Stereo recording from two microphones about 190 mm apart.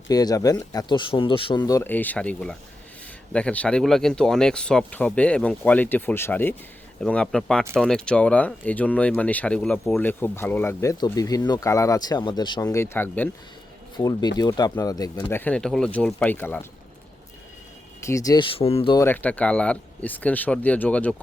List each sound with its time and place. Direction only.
0.1 s speech: 20° left (ahead or behind)
13.9 s speech: 20° left (ahead or behind)
18.0 s speech: 15° left (ahead or behind)
18.9 s speech: 10° left (ahead or behind)